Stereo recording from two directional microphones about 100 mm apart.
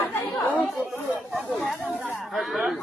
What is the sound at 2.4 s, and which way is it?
Speech, 5° right (ahead or behind).